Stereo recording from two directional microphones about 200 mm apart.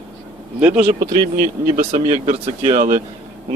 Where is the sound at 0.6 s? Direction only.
10° right (ahead or behind).